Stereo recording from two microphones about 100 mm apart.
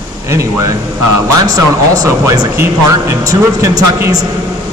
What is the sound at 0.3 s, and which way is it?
Speech, 30° right (ahead or behind).